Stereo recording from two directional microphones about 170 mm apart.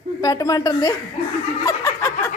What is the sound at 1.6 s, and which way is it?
Snicker, 15° left (ahead or behind).